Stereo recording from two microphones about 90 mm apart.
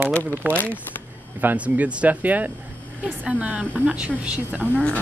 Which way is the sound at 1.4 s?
20° right (ahead or behind).